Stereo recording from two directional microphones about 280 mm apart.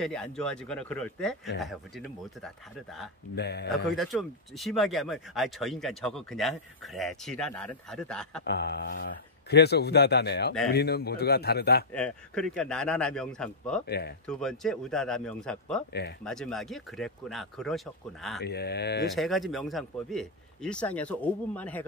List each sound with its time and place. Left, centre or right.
0.0 s speech: centre
3.3 s speech: left
3.9 s speech: centre
8.5 s speech: left
11.9 s speech: centre
13.8 s speech: left
14.2 s speech: centre
18.4 s speech: left
19.1 s speech: centre